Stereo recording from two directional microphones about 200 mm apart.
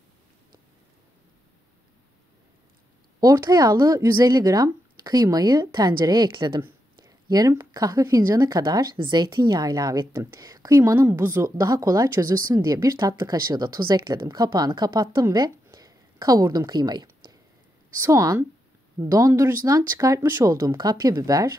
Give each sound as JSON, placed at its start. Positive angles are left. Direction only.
{"t": 3.2, "sound": "speech", "side_deg": -20}